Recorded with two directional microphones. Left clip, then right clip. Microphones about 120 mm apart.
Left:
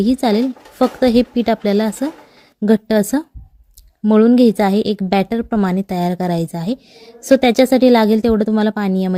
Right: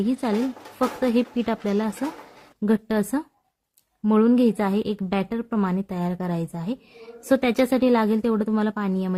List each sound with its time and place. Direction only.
0.0 s a woman's voice: 45° left (ahead or behind)